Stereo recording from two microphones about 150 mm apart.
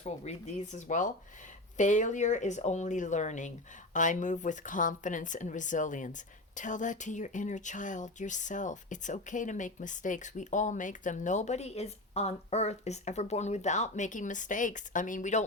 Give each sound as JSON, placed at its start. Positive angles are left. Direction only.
{"t": 0.0, "sound": "speech", "side_deg": 50}